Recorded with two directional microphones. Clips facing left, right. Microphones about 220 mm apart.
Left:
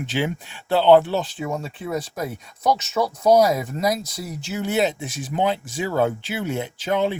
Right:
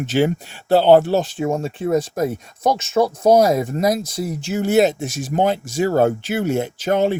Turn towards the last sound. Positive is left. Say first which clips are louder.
# right 4 dB
turn(degrees=-45)  # may be behind; listen again after turning